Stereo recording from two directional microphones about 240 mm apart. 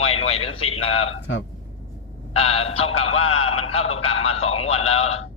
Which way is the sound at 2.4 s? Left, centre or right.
Left.